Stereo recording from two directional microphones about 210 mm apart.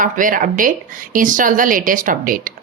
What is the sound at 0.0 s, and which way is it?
A woman's voice, 40° right (ahead or behind).